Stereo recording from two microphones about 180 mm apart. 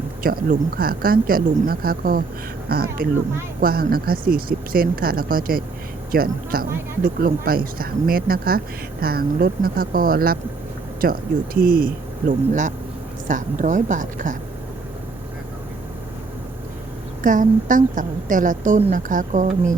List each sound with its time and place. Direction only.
0.2 s a woman's voice: 55° right (ahead or behind)
17.2 s a woman's voice: 45° right (ahead or behind)